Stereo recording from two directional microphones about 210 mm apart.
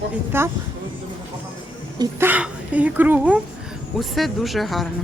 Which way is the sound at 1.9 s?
10° right (ahead or behind).